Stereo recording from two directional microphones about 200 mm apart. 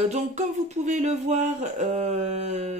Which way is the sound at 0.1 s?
35° right (ahead or behind).